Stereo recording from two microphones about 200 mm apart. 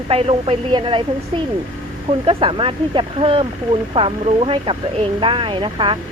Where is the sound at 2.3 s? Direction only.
25° right (ahead or behind).